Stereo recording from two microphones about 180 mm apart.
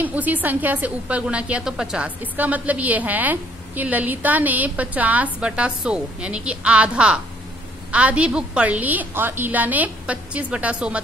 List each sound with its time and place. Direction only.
0.0 s a woman's voice: 10° right (ahead or behind)